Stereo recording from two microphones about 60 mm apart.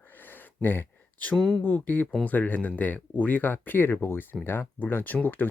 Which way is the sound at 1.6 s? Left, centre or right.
Left.